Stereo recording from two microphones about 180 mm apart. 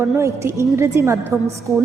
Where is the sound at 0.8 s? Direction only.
15° right (ahead or behind).